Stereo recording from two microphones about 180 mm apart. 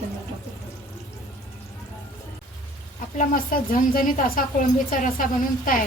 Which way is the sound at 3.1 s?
50° left (ahead or behind).